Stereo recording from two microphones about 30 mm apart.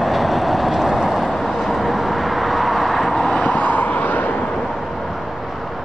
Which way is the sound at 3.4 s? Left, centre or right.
Left.